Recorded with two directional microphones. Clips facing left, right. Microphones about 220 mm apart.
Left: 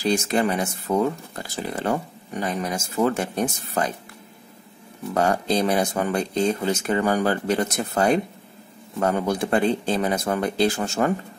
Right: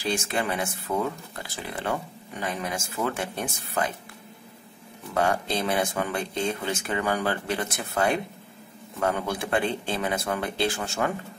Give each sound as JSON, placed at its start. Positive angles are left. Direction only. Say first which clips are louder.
{"t": 0.0, "sound": "speech", "louder": "left 6 dB", "side_deg": 40}
{"t": 5.1, "sound": "speech", "louder": "left 4 dB", "side_deg": 40}